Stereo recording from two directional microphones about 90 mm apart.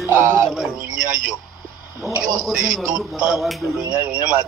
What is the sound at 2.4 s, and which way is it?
Speech, centre (ahead or behind).